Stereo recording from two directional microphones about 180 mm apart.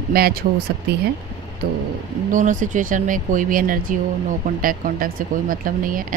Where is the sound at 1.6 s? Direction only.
60° right (ahead or behind).